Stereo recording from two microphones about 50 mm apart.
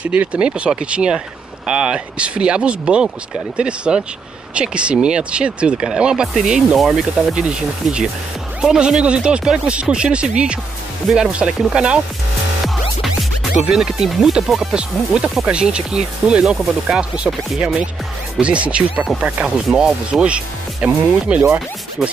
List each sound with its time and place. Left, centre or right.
0.1 s speech: right
12.6 s music: centre
13.7 s speech: centre
14.7 s speech: centre
17.1 s speech: right
19.7 s speech: centre